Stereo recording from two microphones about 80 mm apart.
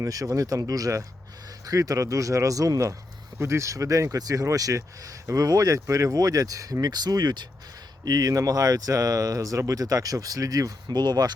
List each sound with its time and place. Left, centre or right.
0.0 s speech: right
10.8 s speech: right